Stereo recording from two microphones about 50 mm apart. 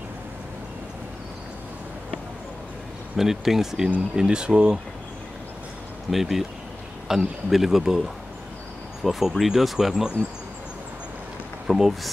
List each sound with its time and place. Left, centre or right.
3.2 s speech: centre
6.0 s speech: centre
9.0 s speech: centre
11.6 s speech: centre